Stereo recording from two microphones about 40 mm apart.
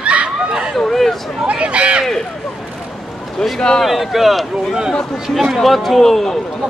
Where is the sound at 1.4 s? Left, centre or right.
Right.